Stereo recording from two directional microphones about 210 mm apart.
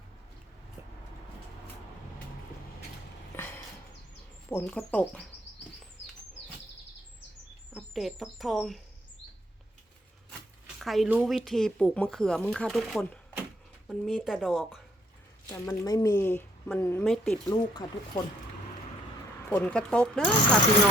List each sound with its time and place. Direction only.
3.3 s a sound: 10° left (ahead or behind)
4.4 s speech: 10° left (ahead or behind)
7.7 s speech: centre (ahead or behind)
10.8 s speech: centre (ahead or behind)
15.4 s speech: 15° left (ahead or behind)
17.5 s speech: 20° left (ahead or behind)
19.5 s speech: 10° left (ahead or behind)